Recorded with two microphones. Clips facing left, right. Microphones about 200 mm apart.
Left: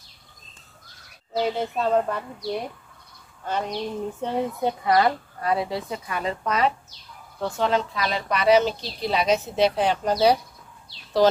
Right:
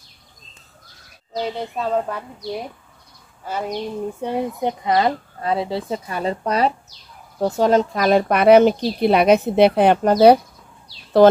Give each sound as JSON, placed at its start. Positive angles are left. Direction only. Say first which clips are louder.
{"t": 1.3, "sound": "speech", "louder": "left 1 dB", "side_deg": 5}
{"t": 3.4, "sound": "speech", "louder": "right 2 dB", "side_deg": -5}